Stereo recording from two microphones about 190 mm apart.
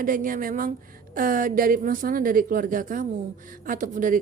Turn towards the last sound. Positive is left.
turn(degrees=-45)  # may be behind; listen again after turning